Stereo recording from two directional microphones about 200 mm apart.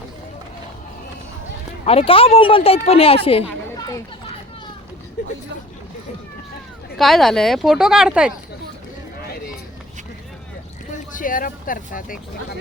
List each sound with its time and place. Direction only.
1.8 s speech: 30° left (ahead or behind)
3.8 s children playing: 20° left (ahead or behind)
7.0 s speech: centre (ahead or behind)
10.9 s speech: 40° left (ahead or behind)